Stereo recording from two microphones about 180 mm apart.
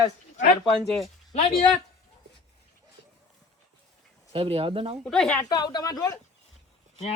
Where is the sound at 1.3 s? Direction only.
40° left (ahead or behind).